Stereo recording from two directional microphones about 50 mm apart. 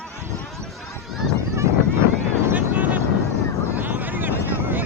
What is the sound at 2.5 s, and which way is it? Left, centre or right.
Vehicle, right.